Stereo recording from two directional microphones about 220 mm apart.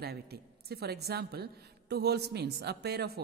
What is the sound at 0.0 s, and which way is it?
Speech, 45° right (ahead or behind).